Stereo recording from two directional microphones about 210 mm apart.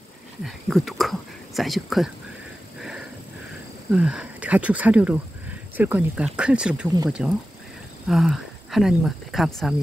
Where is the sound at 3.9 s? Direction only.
5° right (ahead or behind).